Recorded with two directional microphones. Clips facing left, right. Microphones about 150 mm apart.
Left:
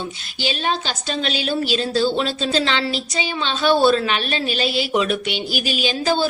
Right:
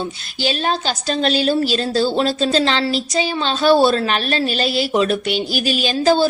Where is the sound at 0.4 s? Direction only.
40° right (ahead or behind).